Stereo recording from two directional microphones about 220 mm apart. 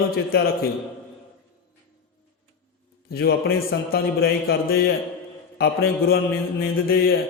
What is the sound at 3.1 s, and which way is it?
A man's voice, 45° left (ahead or behind).